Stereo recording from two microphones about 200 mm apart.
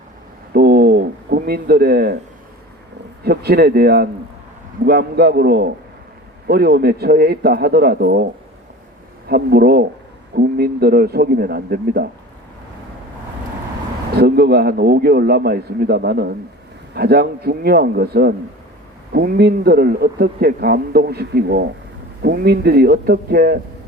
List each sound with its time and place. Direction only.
0.5 s a sound: 50° right (ahead or behind)
3.2 s a man's voice: 50° right (ahead or behind)
9.3 s a man's voice: 50° right (ahead or behind)
14.2 s a man's voice: 50° right (ahead or behind)